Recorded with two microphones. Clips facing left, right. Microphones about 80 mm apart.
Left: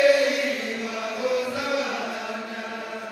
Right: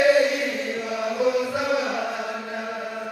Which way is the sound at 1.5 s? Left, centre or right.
Right.